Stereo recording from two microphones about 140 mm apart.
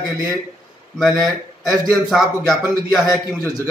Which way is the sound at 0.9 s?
Centre (ahead or behind).